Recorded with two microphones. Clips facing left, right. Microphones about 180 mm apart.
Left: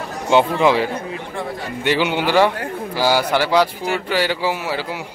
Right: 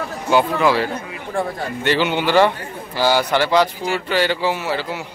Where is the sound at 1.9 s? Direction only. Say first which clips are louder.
Even; 10° left (ahead or behind).